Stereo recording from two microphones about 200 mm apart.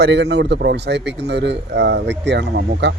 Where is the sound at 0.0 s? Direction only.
60° right (ahead or behind).